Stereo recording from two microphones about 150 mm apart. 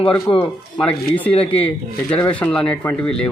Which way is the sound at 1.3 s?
40° left (ahead or behind).